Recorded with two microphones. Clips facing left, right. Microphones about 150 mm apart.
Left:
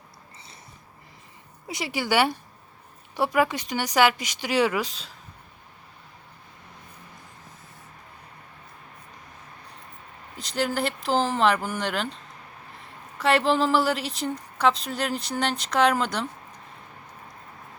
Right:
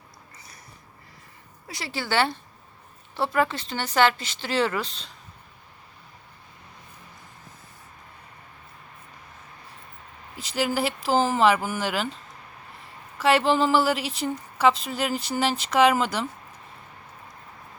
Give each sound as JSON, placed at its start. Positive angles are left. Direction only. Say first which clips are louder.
{"t": 1.6, "sound": "speech", "louder": "left 4 dB", "side_deg": 20}
{"t": 10.3, "sound": "a woman's voice", "louder": "right 1 dB", "side_deg": -5}